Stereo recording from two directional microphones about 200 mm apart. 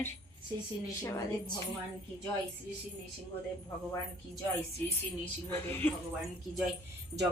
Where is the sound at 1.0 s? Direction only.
15° left (ahead or behind).